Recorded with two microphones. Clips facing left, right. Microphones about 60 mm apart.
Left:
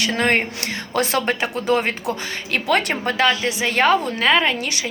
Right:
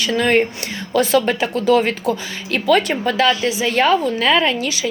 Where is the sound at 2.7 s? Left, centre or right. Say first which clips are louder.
Right 4 dB; left.